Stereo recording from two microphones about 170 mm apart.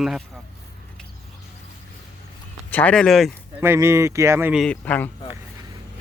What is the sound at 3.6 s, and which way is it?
Speech, 15° right (ahead or behind).